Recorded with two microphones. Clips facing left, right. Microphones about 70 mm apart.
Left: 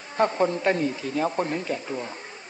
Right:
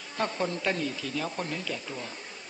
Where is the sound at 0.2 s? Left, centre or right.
Left.